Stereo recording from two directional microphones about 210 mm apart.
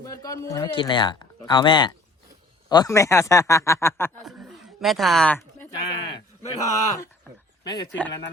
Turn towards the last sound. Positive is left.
turn(degrees=20)  # may be behind; listen again after turning